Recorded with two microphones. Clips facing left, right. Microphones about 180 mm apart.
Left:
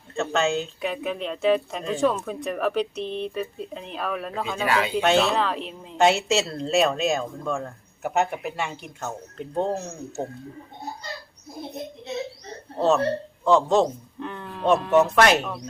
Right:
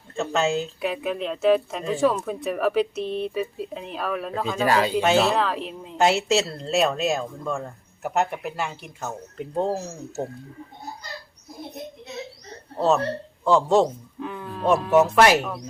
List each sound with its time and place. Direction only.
0.2 s speech: 5° right (ahead or behind)
4.6 s speech: 35° right (ahead or behind)
4.9 s speech: 5° right (ahead or behind)
13.4 s a man's voice: 5° right (ahead or behind)